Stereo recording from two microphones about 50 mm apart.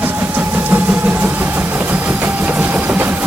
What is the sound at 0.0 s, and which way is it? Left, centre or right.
Vehicle, right.